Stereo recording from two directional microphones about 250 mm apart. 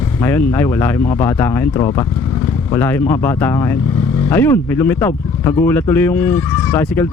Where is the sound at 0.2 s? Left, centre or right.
Centre.